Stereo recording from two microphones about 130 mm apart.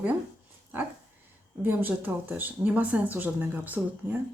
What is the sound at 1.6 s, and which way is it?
Speech, 15° right (ahead or behind).